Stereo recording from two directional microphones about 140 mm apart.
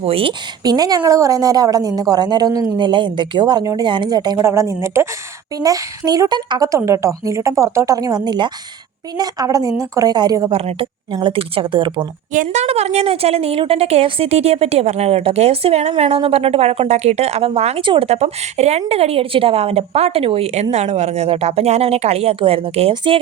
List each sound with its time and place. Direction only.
0.0 s speech: 40° right (ahead or behind)
0.6 s a woman's voice: 30° right (ahead or behind)
10.5 s a woman's voice: 45° right (ahead or behind)
12.3 s a woman's voice: 60° right (ahead or behind); by 23.2 s 40° right (ahead or behind)